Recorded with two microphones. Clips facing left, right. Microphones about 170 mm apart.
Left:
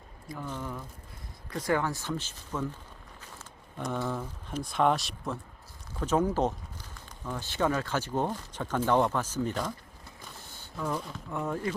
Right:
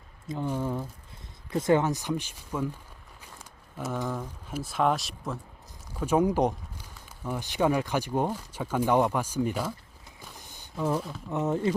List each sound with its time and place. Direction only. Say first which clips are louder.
0.3 s speech: right 7 dB; 25° right (ahead or behind)
3.2 s a sound: left 1 dB; 10° right (ahead or behind)
4.1 s speech: right 1 dB; 10° right (ahead or behind)
6.0 s speech: right 3 dB; 10° right (ahead or behind)
10.2 s a sound: right 1 dB; 15° right (ahead or behind)
11.3 s speech: right 5 dB; 20° right (ahead or behind)